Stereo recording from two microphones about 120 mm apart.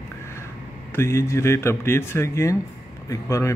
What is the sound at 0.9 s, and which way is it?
Speech, 20° left (ahead or behind).